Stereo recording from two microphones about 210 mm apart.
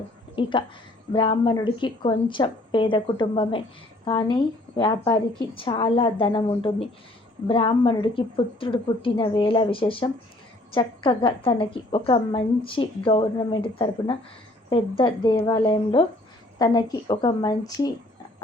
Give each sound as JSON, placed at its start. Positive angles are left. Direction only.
{"t": 0.4, "sound": "a woman's voice", "side_deg": 25}